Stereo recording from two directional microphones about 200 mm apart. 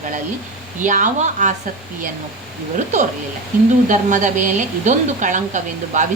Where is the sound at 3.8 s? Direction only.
40° right (ahead or behind).